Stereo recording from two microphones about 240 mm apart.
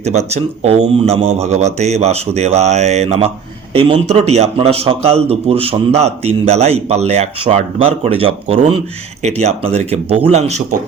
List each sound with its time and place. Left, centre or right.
0.0 s speech: right